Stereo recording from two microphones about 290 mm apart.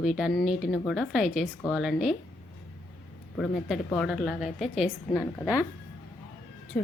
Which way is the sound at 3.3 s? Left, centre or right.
Centre.